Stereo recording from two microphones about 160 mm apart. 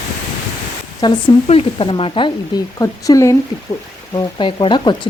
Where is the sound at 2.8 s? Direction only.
20° left (ahead or behind).